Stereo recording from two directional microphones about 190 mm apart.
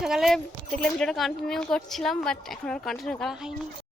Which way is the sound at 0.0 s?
Centre (ahead or behind).